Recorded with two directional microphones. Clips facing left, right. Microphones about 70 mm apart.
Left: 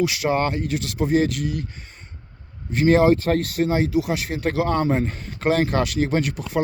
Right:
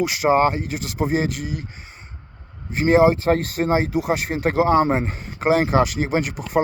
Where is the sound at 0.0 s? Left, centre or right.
Right.